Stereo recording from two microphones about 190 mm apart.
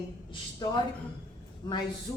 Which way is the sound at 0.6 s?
20° left (ahead or behind).